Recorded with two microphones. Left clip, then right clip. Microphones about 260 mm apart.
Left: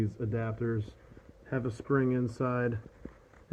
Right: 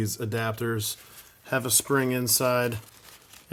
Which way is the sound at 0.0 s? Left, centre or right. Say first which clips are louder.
Right 6 dB; centre.